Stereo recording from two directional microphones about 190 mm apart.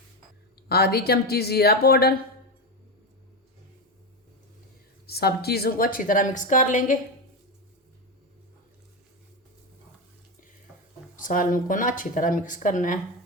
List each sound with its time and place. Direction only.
0.7 s a woman's voice: 55° left (ahead or behind)
5.0 s a woman's voice: 55° left (ahead or behind)
11.2 s a woman's voice: 45° left (ahead or behind)